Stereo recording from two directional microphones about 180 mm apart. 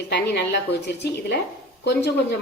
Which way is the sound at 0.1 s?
70° left (ahead or behind).